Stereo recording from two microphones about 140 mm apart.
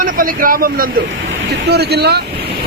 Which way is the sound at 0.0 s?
85° right.